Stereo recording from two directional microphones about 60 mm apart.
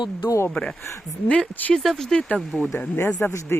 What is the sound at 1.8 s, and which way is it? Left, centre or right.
Speech, centre.